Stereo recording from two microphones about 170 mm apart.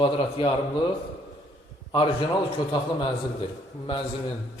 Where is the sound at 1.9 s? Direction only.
30° left (ahead or behind).